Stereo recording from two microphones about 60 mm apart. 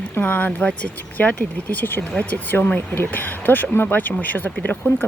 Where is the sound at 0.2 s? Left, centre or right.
Left.